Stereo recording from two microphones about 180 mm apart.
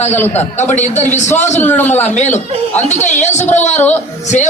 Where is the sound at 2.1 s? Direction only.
40° left (ahead or behind).